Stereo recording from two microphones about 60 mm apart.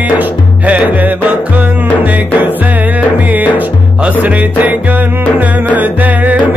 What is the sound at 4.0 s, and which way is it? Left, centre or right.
Music, right.